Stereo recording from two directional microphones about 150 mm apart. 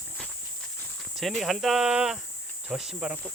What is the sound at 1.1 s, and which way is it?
Speech, centre (ahead or behind).